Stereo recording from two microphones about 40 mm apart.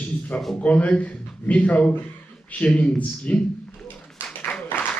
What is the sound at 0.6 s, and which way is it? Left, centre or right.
A man's voice, left.